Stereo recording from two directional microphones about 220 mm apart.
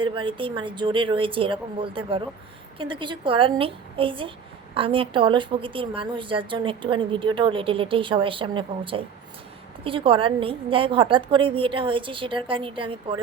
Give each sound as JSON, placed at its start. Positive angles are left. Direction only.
{"t": 0.0, "sound": "a woman's voice", "side_deg": -20}